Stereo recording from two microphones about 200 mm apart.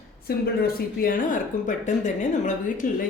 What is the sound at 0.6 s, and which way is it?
A woman's voice, 45° left (ahead or behind).